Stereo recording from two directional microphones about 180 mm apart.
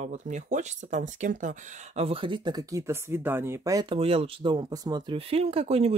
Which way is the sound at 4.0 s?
30° right (ahead or behind).